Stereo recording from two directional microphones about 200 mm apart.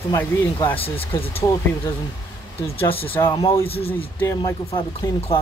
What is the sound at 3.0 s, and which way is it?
Speech, 10° left (ahead or behind).